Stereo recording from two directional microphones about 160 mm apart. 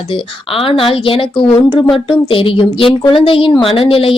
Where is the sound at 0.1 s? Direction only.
35° left (ahead or behind).